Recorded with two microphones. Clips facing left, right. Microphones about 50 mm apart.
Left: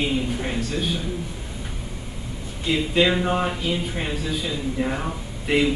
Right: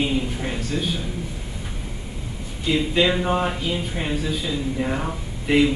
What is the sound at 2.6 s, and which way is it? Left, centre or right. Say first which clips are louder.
A man's voice: even; centre.